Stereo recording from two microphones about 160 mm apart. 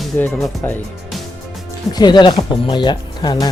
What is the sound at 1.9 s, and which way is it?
Speech, 25° left (ahead or behind).